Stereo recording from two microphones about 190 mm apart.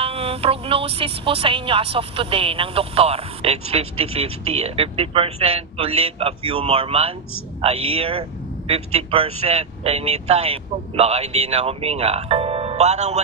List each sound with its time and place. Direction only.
0.0 s speech: 30° right (ahead or behind)